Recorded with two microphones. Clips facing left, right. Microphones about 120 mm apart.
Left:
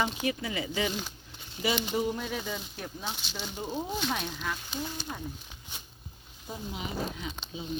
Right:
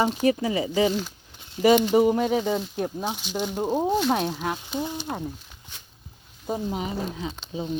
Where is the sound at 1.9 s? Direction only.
70° right (ahead or behind).